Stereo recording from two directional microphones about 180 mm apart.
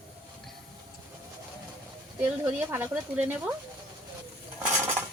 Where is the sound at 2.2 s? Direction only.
10° right (ahead or behind).